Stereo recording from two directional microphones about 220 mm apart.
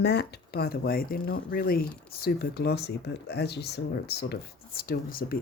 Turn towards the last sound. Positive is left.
turn(degrees=40)  # may be behind; listen again after turning